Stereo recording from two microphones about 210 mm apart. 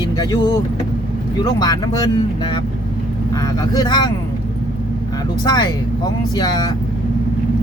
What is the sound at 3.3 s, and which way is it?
Speech, 15° left (ahead or behind).